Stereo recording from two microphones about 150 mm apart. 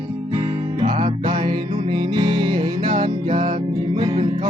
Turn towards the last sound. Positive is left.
turn(degrees=-30)  # may be behind; listen again after turning